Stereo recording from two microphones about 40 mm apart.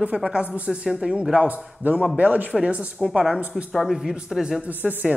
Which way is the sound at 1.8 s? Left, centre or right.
Right.